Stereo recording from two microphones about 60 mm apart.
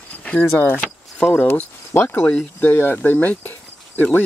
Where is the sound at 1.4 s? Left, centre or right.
Left.